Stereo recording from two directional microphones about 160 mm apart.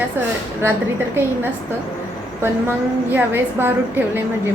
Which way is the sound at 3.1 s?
15° right (ahead or behind).